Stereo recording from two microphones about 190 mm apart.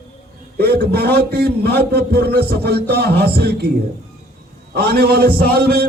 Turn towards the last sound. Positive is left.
turn(degrees=-55)  # may be behind; listen again after turning